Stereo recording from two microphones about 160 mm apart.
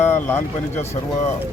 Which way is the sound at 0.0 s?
15° left (ahead or behind).